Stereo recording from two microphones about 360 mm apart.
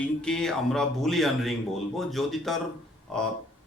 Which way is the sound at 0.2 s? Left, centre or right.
Centre.